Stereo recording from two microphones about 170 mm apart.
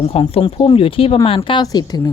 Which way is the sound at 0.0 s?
35° left (ahead or behind).